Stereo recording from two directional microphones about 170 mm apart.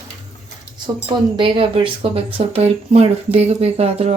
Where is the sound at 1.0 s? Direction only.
30° right (ahead or behind).